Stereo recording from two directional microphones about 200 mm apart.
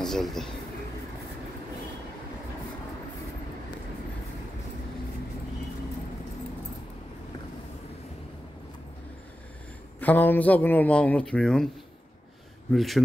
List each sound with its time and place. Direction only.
0.0 s speech: centre (ahead or behind)
9.9 s a man's voice: 10° left (ahead or behind)
12.7 s speech: centre (ahead or behind)